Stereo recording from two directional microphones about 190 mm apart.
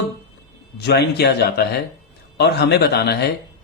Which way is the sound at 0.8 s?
60° left (ahead or behind).